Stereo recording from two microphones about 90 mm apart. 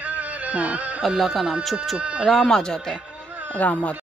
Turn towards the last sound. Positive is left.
turn(degrees=15)  # may be behind; listen again after turning